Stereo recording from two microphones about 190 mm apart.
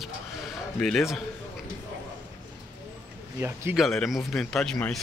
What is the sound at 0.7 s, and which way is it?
Speech, 5° left (ahead or behind).